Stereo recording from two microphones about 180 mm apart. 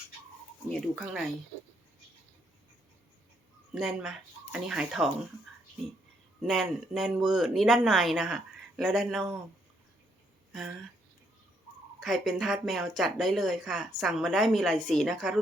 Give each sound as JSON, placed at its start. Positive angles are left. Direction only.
{"t": 0.7, "sound": "a woman's voice", "side_deg": 0}
{"t": 3.7, "sound": "a woman's voice", "side_deg": -5}
{"t": 6.4, "sound": "a woman's voice", "side_deg": 0}
{"t": 11.9, "sound": "a woman's voice", "side_deg": 0}